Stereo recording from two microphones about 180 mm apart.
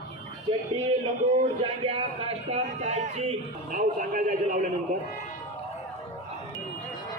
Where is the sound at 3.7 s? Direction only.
50° right (ahead or behind).